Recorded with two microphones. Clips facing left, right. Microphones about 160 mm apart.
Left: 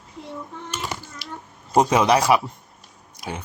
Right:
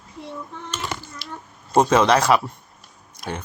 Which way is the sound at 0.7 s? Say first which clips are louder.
Right 1 dB; 10° left (ahead or behind).